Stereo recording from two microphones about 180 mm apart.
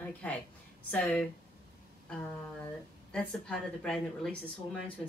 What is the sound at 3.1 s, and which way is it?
A woman's voice, 5° left (ahead or behind).